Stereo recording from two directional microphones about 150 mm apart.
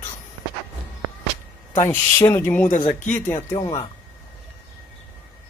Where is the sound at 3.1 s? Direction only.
15° left (ahead or behind).